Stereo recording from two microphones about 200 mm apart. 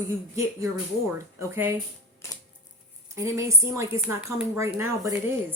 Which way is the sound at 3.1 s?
15° right (ahead or behind).